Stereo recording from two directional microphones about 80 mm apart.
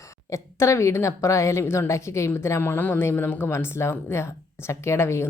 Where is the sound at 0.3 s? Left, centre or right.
Left.